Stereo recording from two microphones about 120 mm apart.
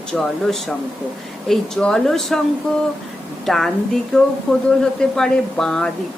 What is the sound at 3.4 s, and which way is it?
A woman's voice, centre (ahead or behind).